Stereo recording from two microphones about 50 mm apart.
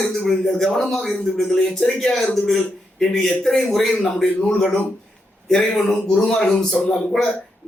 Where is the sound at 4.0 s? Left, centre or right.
Left.